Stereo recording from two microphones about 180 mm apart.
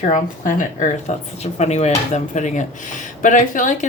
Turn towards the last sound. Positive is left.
turn(degrees=45)  # may be behind; listen again after turning